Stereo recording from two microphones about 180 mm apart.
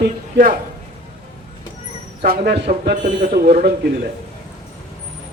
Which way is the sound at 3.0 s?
90° right.